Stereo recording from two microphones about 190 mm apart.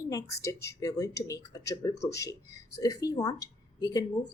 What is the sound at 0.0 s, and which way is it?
Speech, 15° left (ahead or behind).